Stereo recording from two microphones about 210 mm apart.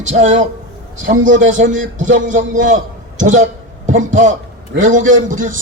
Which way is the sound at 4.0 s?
35° right (ahead or behind).